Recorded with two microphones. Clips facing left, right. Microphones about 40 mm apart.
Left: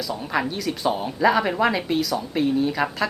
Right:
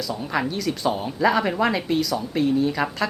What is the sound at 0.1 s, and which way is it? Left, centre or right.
Speech, centre.